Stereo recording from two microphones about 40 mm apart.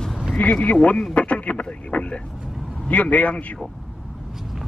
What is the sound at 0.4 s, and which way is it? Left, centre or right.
A man's voice, left.